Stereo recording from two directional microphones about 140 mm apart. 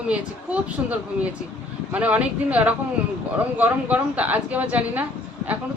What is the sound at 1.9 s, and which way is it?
Speech, 10° right (ahead or behind).